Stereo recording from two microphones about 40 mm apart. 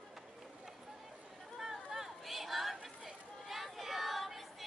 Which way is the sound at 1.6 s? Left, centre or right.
Centre.